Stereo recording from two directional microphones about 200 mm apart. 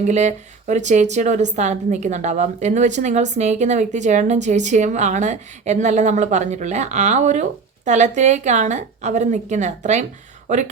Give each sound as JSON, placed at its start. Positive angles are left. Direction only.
{"t": 0.1, "sound": "a woman's voice", "side_deg": -35}